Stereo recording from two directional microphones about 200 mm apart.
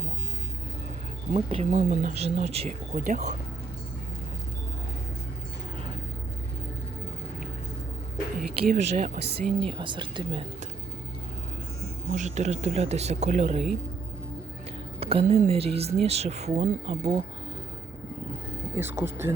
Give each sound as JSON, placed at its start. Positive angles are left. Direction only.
{"t": 1.3, "sound": "speech", "side_deg": -30}
{"t": 8.4, "sound": "speech", "side_deg": -40}
{"t": 12.1, "sound": "speech", "side_deg": -35}
{"t": 15.0, "sound": "speech", "side_deg": -30}
{"t": 18.7, "sound": "speech", "side_deg": -15}